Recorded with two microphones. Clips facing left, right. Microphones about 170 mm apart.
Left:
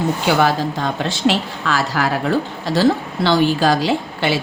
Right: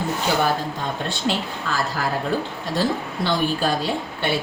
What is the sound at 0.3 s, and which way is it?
Speech, 90° left.